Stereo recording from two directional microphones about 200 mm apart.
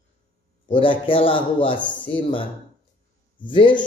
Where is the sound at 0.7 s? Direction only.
25° left (ahead or behind).